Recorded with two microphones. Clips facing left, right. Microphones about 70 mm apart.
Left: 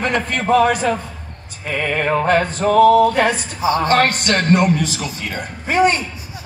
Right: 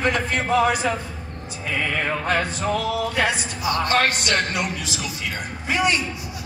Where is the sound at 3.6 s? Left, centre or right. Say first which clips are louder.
Left 7 dB; left.